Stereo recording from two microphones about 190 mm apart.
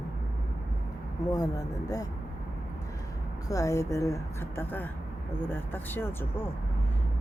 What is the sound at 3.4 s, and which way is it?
Speech, 15° left (ahead or behind).